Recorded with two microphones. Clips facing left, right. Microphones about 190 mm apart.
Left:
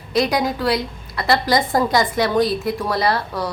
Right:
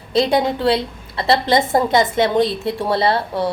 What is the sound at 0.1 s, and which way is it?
A woman's voice, 25° right (ahead or behind).